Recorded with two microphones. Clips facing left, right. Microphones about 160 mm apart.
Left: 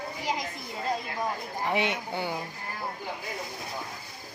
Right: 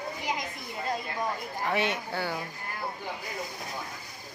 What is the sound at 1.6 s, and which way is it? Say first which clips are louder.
Speech: left 1 dB; 20° left (ahead or behind).